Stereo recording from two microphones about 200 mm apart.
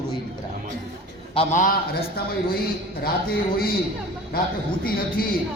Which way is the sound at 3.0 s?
50° left (ahead or behind).